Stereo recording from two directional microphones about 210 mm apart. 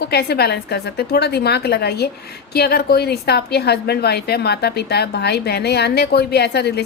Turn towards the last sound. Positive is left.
turn(degrees=50)  # may be behind; listen again after turning